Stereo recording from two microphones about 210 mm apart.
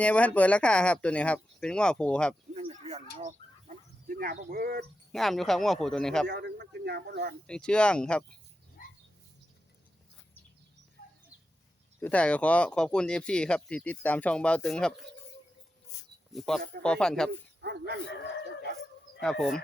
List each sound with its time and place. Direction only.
0.0 s speech: 5° left (ahead or behind)
2.6 s a sound: 30° right (ahead or behind); by 4.9 s 45° right (ahead or behind)
5.1 s speech: centre (ahead or behind)
6.2 s speech: 55° right (ahead or behind)
7.4 s speech: 5° left (ahead or behind)
8.8 s a sound: 40° left (ahead or behind)
11.9 s speech: 5° left (ahead or behind)
15.9 s insect: 15° left (ahead or behind)
16.3 s speech: centre (ahead or behind)
17.6 s speech: 50° right (ahead or behind)
19.2 s speech: centre (ahead or behind)